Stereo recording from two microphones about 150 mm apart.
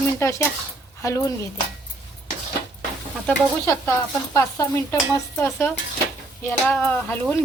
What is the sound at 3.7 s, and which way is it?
Speech, 15° left (ahead or behind).